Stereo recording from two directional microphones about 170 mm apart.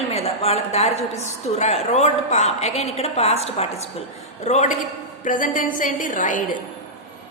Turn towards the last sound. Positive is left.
turn(degrees=50)  # may be behind; listen again after turning